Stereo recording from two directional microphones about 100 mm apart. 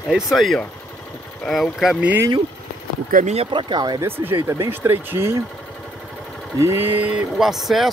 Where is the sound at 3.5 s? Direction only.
45° right (ahead or behind).